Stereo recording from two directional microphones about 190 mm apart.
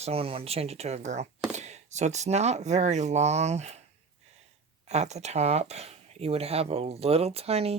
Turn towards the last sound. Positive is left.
turn(degrees=-30)  # may be behind; listen again after turning